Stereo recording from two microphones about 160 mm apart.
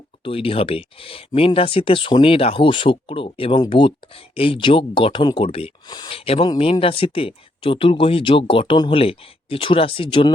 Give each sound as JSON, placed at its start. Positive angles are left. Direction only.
{"t": 0.3, "sound": "speech", "side_deg": 35}